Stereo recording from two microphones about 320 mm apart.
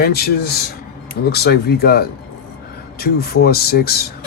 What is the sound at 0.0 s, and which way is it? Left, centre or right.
Speech, left.